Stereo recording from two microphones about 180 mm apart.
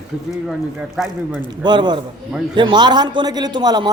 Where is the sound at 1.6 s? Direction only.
25° right (ahead or behind).